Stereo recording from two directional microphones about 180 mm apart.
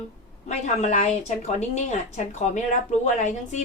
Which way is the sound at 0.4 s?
40° left (ahead or behind).